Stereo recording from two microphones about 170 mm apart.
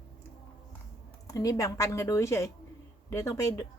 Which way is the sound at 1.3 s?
20° left (ahead or behind).